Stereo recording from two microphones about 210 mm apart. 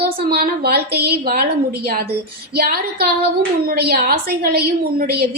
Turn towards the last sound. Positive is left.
turn(degrees=-50)  # may be behind; listen again after turning